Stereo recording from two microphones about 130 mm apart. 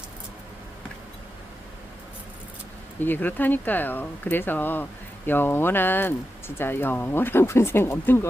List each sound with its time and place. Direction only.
3.0 s speech: 15° left (ahead or behind)